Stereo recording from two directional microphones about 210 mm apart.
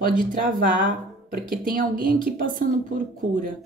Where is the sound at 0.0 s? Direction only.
40° right (ahead or behind).